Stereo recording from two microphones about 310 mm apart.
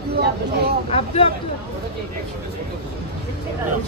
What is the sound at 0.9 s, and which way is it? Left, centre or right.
Speech, centre.